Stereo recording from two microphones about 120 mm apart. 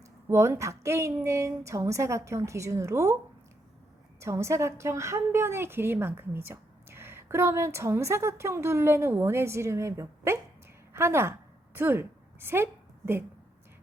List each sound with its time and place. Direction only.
0.3 s a woman's voice: 25° right (ahead or behind)
4.2 s a woman's voice: 25° right (ahead or behind)
10.9 s a sound: 20° right (ahead or behind)